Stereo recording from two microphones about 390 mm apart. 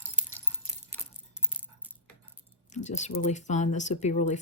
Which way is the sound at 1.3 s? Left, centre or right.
Centre.